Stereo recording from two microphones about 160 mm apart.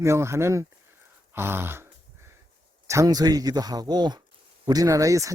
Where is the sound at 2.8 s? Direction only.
20° right (ahead or behind).